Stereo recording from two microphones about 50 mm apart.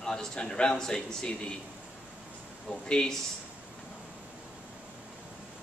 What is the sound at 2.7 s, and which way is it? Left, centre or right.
Speech, centre.